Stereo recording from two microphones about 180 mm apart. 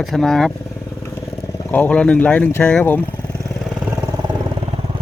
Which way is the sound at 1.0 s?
15° left (ahead or behind).